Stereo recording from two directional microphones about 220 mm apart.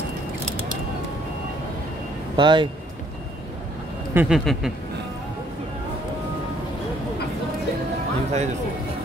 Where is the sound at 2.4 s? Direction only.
20° right (ahead or behind).